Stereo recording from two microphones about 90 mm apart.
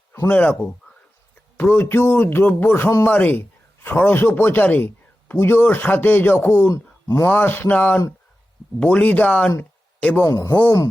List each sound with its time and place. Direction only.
0.3 s speech: 15° left (ahead or behind)
10.2 s speech: 40° left (ahead or behind)